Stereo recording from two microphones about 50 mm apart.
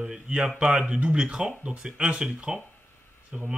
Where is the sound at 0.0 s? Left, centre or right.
Centre.